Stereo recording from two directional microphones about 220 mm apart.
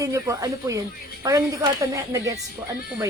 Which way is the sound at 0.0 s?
15° right (ahead or behind).